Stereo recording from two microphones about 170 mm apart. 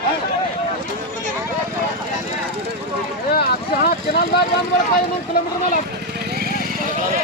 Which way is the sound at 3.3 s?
65° left (ahead or behind).